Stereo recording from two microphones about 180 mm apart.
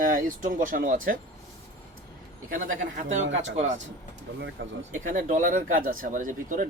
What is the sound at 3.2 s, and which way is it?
Speech, 90° right.